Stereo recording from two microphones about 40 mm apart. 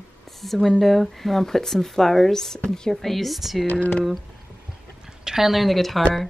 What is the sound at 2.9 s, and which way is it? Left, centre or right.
Speech, centre.